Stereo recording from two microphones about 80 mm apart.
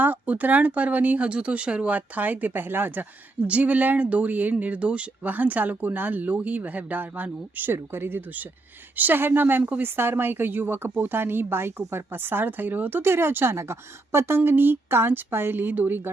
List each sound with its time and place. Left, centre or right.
0.0 s speech: right